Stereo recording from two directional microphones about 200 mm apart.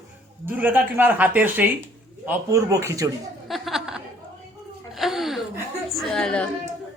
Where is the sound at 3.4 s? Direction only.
Centre (ahead or behind).